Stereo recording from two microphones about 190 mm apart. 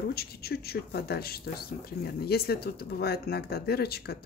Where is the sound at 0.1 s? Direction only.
55° left (ahead or behind).